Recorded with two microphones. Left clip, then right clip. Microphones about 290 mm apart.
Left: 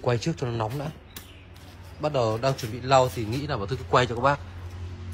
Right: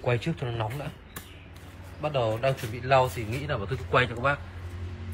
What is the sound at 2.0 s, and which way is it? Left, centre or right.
A man's voice, centre.